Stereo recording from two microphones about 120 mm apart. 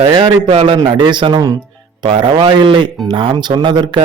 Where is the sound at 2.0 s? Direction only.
45° right (ahead or behind).